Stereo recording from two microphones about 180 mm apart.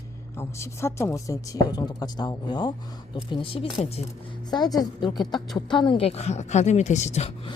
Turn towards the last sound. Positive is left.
turn(degrees=35)  # may be behind; listen again after turning